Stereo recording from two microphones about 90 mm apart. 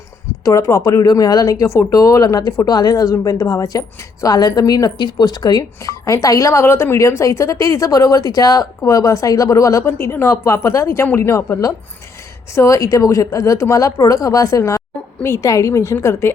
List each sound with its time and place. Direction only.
0.4 s speech: 40° left (ahead or behind)